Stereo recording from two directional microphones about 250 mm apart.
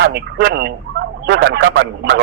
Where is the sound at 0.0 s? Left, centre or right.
Right.